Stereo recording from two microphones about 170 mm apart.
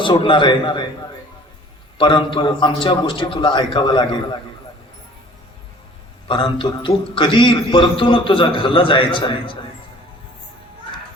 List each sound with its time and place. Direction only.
0.0 s a man's voice: 30° left (ahead or behind)
2.0 s a man's voice: 30° left (ahead or behind)
6.2 s a man's voice: 30° left (ahead or behind)